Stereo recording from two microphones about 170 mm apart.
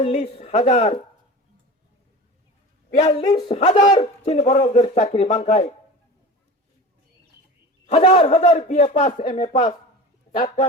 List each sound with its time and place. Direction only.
0.0 s speech: 40° left (ahead or behind)
3.0 s a man's voice: 40° left (ahead or behind)
7.9 s a man's voice: 40° left (ahead or behind)